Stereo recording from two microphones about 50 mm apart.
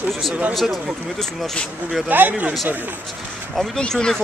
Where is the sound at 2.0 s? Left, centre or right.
Right.